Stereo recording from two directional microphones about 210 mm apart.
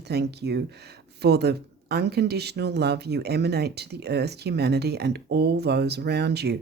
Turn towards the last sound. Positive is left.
turn(degrees=-50)  # may be behind; listen again after turning